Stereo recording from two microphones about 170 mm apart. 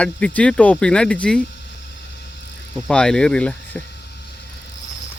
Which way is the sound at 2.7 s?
5° left (ahead or behind).